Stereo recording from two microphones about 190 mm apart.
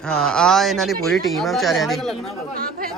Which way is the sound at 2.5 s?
50° right (ahead or behind).